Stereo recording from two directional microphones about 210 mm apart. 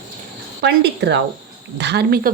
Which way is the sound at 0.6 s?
55° right (ahead or behind).